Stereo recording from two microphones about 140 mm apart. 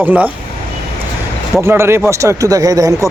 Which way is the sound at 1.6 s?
20° right (ahead or behind).